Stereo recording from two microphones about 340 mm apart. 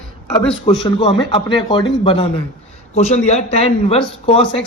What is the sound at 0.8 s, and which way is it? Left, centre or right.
Speech, centre.